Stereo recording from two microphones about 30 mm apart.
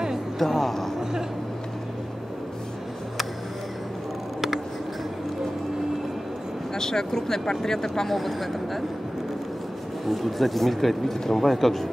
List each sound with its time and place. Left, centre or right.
0.4 s speech: centre
6.7 s speech: centre
8.1 s speech: centre
10.0 s speech: centre